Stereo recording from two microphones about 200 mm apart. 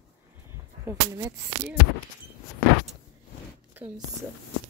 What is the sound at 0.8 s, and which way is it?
Speech, 15° right (ahead or behind).